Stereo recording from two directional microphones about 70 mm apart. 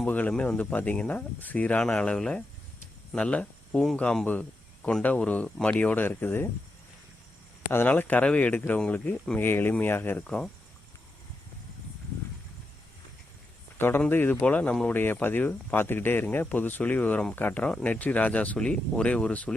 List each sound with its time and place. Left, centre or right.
0.1 s speech: left
5.0 s speech: left
7.7 s speech: left
10.2 s speech: centre
13.7 s speech: left
14.4 s speech: left